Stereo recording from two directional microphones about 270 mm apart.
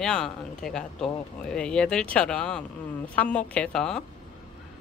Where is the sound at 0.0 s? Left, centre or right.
Centre.